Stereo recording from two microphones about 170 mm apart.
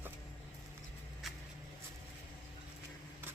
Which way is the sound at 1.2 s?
Centre (ahead or behind).